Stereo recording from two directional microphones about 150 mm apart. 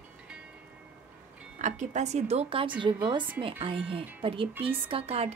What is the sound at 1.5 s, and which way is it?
A woman's voice, 55° right (ahead or behind).